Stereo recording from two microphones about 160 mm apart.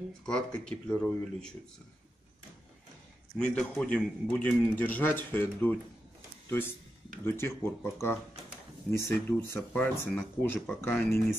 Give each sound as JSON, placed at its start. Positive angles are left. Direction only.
{"t": 0.2, "sound": "speech", "side_deg": 5}
{"t": 3.3, "sound": "a man's voice", "side_deg": 10}
{"t": 7.2, "sound": "a man's voice", "side_deg": 15}